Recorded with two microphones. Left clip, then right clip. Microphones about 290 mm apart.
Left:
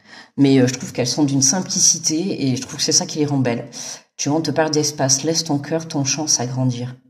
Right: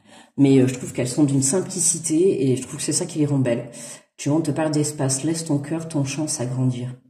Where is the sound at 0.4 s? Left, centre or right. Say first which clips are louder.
Left 2 dB; left.